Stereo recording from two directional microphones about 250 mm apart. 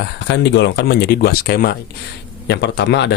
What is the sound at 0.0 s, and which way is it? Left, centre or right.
Speech, left.